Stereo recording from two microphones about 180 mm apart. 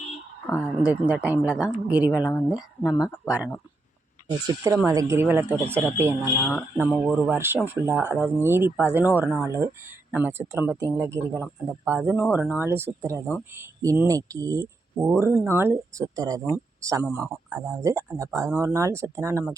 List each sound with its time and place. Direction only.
0.6 s speech: 5° right (ahead or behind)
2.0 s speech: 20° left (ahead or behind)
4.3 s speech: 20° right (ahead or behind)